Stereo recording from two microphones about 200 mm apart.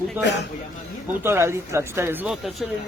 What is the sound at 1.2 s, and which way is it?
Speech, 10° right (ahead or behind).